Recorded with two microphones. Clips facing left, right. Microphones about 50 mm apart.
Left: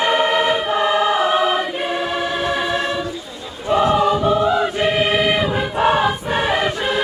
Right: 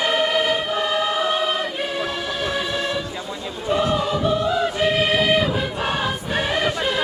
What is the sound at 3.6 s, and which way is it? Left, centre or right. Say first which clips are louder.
Choir: left 6 dB; left.